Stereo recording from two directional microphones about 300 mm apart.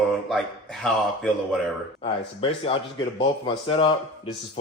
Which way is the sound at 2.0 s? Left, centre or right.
Centre.